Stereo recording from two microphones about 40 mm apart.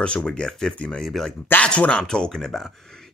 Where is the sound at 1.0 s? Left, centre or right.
Centre.